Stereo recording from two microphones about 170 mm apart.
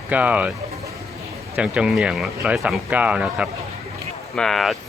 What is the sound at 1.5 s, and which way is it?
Speech, 5° right (ahead or behind).